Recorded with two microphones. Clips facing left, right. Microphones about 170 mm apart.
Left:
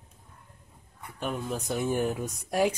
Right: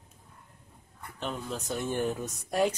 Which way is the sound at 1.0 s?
10° left (ahead or behind).